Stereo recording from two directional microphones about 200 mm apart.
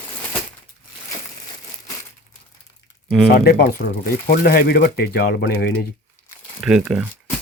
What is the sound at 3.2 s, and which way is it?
Speech, 50° left (ahead or behind).